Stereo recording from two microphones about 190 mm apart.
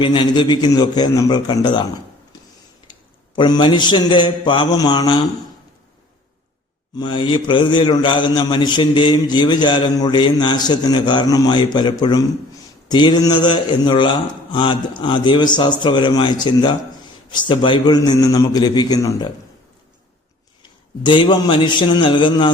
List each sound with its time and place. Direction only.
0.0 s a man's voice: 25° left (ahead or behind)
3.3 s a man's voice: 25° left (ahead or behind)
6.9 s a man's voice: 25° left (ahead or behind)
20.6 s a man's voice: 25° left (ahead or behind)